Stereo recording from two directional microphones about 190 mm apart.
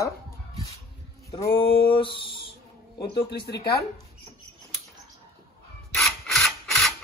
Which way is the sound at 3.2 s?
55° left (ahead or behind).